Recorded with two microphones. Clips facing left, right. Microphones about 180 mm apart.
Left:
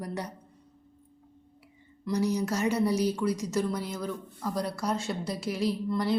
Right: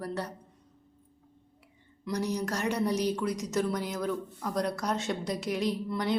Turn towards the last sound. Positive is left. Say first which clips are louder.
# left 2 dB
turn(degrees=5)  # may be behind; listen again after turning